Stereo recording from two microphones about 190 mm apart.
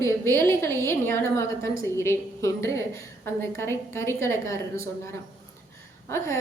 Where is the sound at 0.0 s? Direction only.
15° left (ahead or behind).